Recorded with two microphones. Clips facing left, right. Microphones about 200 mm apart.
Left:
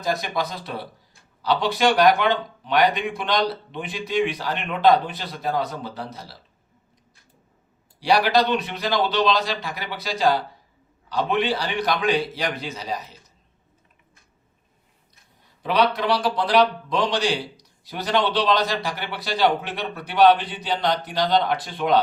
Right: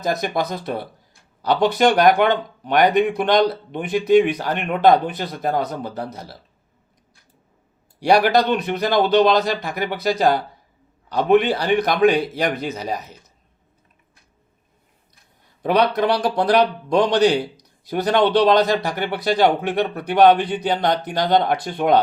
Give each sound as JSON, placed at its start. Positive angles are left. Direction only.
{"t": 0.0, "sound": "speech", "side_deg": -50}
{"t": 7.9, "sound": "speech", "side_deg": -50}
{"t": 15.6, "sound": "speech", "side_deg": -50}